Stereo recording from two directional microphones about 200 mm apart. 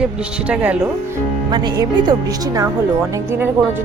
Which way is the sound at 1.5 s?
20° right (ahead or behind).